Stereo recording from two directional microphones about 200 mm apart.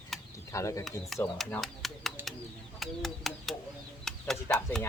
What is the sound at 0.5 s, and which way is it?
Speech, 15° left (ahead or behind).